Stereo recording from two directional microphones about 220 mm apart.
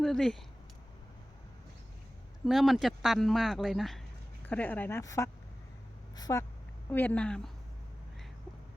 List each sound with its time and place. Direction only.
0.0 s speech: centre (ahead or behind)
2.5 s speech: centre (ahead or behind); by 6.4 s 15° left (ahead or behind)
6.9 s speech: 5° left (ahead or behind)